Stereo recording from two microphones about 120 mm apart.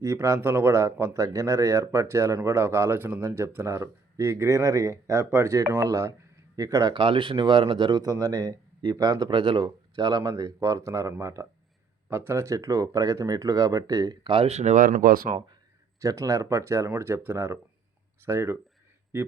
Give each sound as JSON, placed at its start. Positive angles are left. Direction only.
{"t": 0.0, "sound": "speech", "side_deg": -25}
{"t": 7.0, "sound": "speech", "side_deg": -45}
{"t": 16.0, "sound": "speech", "side_deg": -25}